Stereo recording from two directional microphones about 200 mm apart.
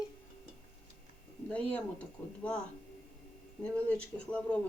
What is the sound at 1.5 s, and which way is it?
Speech, 5° left (ahead or behind).